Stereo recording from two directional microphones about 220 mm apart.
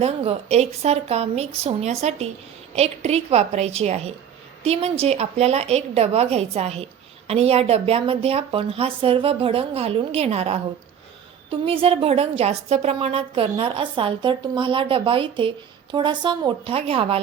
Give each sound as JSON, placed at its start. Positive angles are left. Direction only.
{"t": 0.0, "sound": "a woman's voice", "side_deg": -30}
{"t": 11.6, "sound": "a woman's voice", "side_deg": -25}